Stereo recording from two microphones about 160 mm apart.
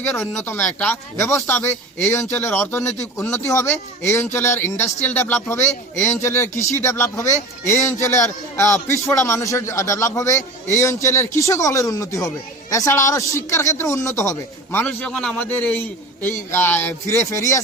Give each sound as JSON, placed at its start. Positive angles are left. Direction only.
{"t": 0.0, "sound": "a man's voice", "side_deg": 15}